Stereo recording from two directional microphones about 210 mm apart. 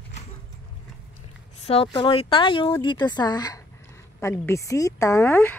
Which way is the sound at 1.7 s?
25° left (ahead or behind).